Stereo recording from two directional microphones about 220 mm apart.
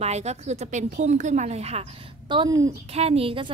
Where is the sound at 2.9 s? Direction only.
25° right (ahead or behind).